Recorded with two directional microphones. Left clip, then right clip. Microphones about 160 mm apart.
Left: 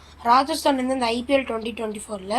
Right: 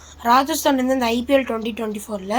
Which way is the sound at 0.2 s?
40° right (ahead or behind).